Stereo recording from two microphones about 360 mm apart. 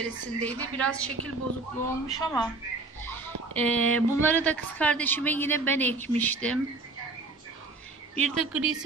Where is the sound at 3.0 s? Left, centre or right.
Centre.